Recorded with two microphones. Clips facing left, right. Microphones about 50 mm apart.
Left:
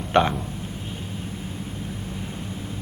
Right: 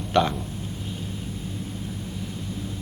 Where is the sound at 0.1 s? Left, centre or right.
Left.